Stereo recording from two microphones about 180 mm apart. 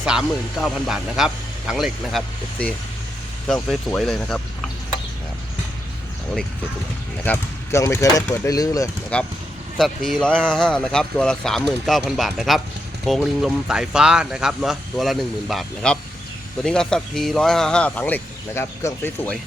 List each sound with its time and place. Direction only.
0.0 s speech: 5° right (ahead or behind)
7.3 s speech: 15° left (ahead or behind)
9.1 s speech: 5° left (ahead or behind)